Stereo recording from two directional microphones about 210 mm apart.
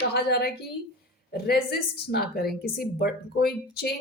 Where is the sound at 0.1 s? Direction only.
50° left (ahead or behind).